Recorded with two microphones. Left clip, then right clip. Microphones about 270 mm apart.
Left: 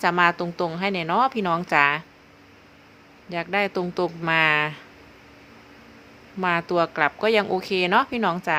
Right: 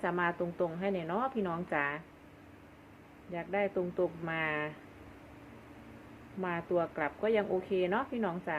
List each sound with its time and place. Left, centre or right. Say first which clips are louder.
0.0 s a woman's voice: left 13 dB; left
3.3 s a woman's voice: left 9 dB; left
6.4 s a woman's voice: left 11 dB; left